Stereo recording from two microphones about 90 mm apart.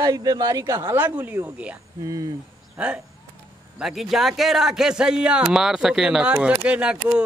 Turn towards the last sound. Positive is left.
turn(degrees=-10)  # may be behind; listen again after turning